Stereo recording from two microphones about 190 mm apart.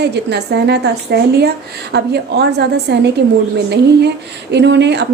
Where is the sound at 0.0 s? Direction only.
60° right (ahead or behind).